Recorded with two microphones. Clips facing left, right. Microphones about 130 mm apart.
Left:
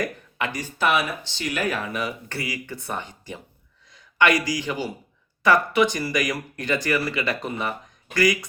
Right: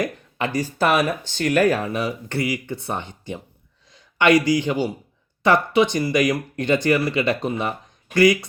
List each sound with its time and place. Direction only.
0.0 s speech: 30° right (ahead or behind)